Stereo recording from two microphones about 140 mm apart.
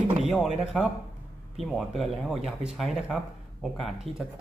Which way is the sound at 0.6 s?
5° right (ahead or behind).